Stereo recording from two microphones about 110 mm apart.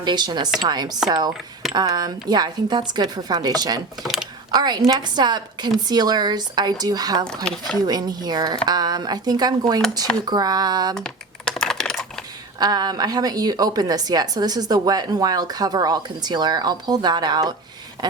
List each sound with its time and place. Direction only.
0.0 s a woman's voice: 40° right (ahead or behind)
4.0 s speech: 5° right (ahead or behind)
4.5 s a woman's voice: 40° right (ahead or behind)
7.4 s speech: 5° left (ahead or behind)
7.9 s a woman's voice: 40° right (ahead or behind)
10.9 s typing: 5° left (ahead or behind)
12.5 s a woman's voice: 40° right (ahead or behind)